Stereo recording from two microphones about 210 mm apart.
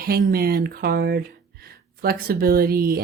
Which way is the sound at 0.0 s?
45° right (ahead or behind).